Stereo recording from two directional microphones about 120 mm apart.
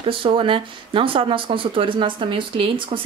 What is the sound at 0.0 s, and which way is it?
Speech, 45° right (ahead or behind).